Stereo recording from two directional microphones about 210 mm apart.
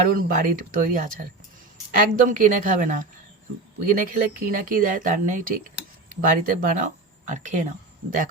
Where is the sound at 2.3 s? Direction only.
40° right (ahead or behind).